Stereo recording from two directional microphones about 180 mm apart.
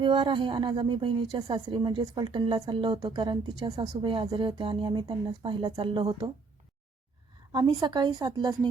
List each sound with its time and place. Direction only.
0.0 s a woman's voice: 25° right (ahead or behind)
7.5 s a woman's voice: 25° right (ahead or behind)